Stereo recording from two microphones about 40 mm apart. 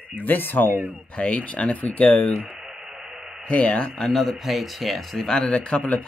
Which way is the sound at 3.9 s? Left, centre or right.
Centre.